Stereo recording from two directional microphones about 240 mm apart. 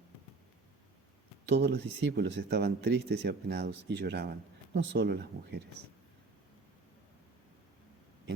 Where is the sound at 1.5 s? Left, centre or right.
Right.